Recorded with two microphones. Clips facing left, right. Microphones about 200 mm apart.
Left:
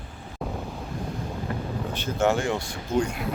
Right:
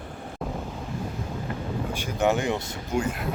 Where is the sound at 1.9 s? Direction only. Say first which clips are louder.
Left 1 dB; 15° right (ahead or behind).